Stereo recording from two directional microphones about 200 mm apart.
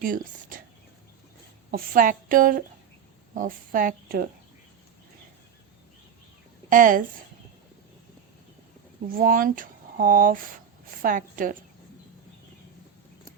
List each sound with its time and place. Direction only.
0.0 s a woman's voice: 45° right (ahead or behind)
1.7 s a woman's voice: 45° right (ahead or behind)
6.7 s a woman's voice: 45° right (ahead or behind)
9.1 s a woman's voice: 45° right (ahead or behind)